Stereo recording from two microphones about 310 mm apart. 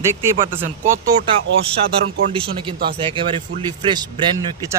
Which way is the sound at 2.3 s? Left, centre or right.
Centre.